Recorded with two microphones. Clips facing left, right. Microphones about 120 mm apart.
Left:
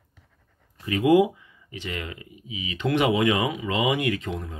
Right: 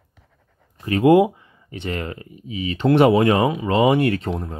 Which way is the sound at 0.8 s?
40° right (ahead or behind).